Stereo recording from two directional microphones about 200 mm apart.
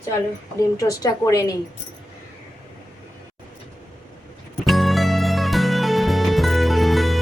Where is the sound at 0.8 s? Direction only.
15° left (ahead or behind).